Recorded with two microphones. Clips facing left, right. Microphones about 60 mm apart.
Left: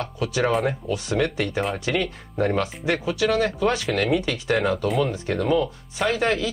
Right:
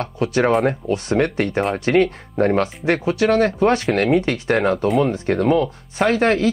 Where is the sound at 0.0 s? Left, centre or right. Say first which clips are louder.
Right 5 dB; right.